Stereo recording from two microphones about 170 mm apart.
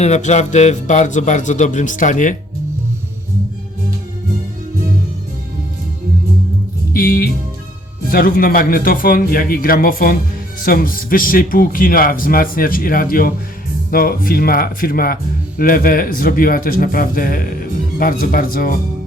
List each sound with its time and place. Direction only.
0.0 s speech: 40° left (ahead or behind)
6.9 s speech: 60° left (ahead or behind)